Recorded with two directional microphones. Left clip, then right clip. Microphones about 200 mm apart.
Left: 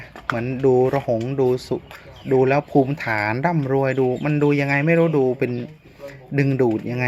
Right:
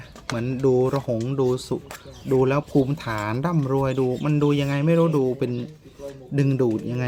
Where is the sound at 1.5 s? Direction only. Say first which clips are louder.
Left 3 dB; 40° right (ahead or behind).